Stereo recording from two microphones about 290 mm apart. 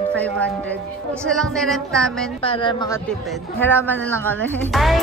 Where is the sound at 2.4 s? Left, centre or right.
Centre.